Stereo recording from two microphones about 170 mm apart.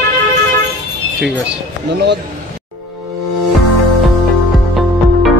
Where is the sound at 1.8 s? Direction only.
90° right.